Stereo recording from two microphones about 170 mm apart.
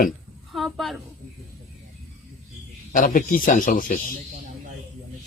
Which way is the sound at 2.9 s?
55° left (ahead or behind).